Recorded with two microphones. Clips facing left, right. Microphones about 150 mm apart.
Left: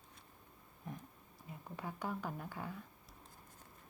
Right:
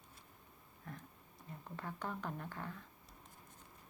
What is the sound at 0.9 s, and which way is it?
Speech, 15° left (ahead or behind).